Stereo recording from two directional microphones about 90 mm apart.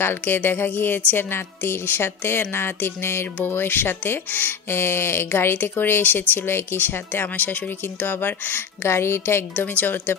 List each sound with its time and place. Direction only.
0.0 s speech: 25° left (ahead or behind)